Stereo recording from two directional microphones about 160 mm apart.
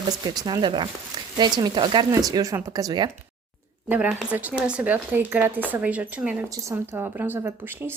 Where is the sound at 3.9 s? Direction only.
10° right (ahead or behind).